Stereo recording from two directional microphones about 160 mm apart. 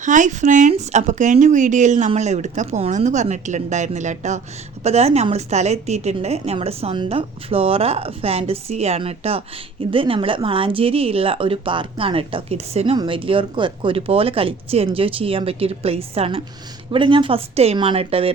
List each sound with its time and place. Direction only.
0.0 s a woman's voice: 50° right (ahead or behind)